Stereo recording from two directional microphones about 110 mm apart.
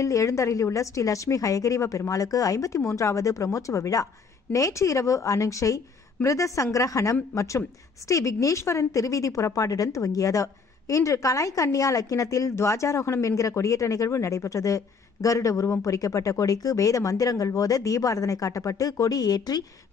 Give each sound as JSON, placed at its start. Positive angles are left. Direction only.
{"t": 0.0, "sound": "a woman's voice", "side_deg": 30}